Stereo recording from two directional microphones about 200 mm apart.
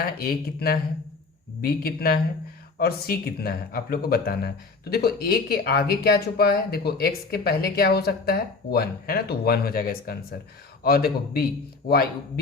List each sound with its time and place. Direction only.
0.0 s speech: 50° left (ahead or behind)